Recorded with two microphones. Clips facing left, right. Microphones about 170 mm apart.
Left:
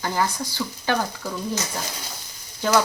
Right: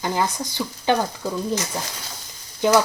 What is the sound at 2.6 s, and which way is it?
Speech, 15° right (ahead or behind).